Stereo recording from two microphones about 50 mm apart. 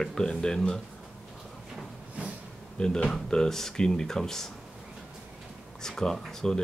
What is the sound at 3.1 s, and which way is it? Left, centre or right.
Speech, centre.